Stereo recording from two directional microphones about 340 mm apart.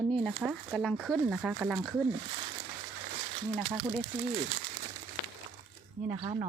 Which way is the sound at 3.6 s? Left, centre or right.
Centre.